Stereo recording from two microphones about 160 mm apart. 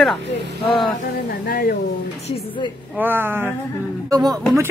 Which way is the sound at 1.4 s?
60° left (ahead or behind).